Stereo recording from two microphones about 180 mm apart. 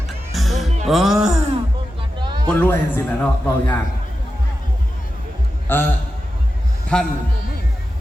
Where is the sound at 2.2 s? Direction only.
25° right (ahead or behind).